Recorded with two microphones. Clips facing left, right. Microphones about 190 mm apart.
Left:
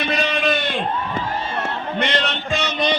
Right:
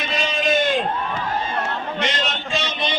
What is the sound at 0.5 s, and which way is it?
Crowd, 45° right (ahead or behind).